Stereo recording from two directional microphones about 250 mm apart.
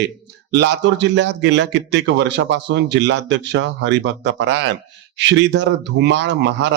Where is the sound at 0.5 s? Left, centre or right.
Right.